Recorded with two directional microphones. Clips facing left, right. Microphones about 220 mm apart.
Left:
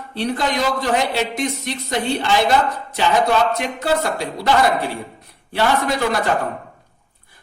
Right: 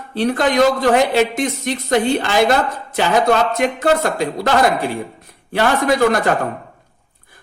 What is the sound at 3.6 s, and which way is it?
Speech, 50° right (ahead or behind).